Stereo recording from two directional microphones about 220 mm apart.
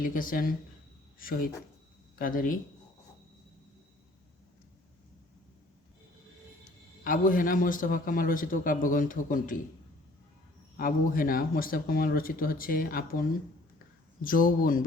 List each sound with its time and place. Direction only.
0.0 s a man's voice: 40° left (ahead or behind)
7.0 s a man's voice: 40° left (ahead or behind)
10.8 s a man's voice: 40° left (ahead or behind)